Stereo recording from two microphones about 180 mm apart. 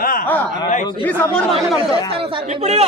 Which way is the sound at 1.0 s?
10° left (ahead or behind).